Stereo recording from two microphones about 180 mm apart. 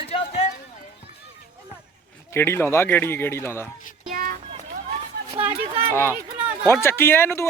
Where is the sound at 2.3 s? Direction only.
15° left (ahead or behind).